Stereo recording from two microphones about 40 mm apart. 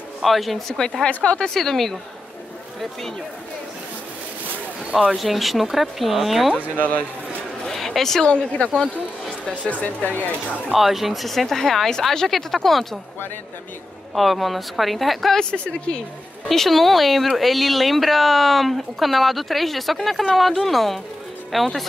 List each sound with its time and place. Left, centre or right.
0.2 s speech: centre
0.7 s speech: centre
1.0 s speech: left
1.5 s speech: centre
5.1 s speech: centre
6.8 s speech: left
7.6 s a sound: centre
8.3 s speech: left
10.7 s speech: centre
14.1 s speech: centre
15.5 s speech: left
16.4 s speech: centre